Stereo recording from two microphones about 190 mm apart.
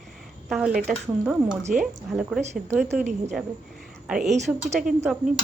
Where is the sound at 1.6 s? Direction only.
40° right (ahead or behind).